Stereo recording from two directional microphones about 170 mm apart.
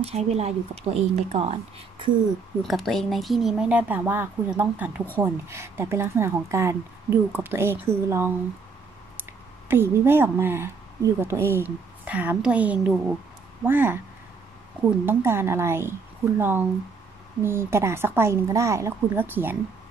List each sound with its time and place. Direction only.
0.0 s speech: 40° right (ahead or behind)
2.6 s a woman's voice: centre (ahead or behind); by 8.3 s 15° right (ahead or behind)
9.7 s a woman's voice: 15° right (ahead or behind)